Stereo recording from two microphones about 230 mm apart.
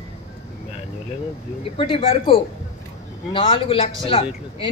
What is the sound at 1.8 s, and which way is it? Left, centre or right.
A man's voice, left.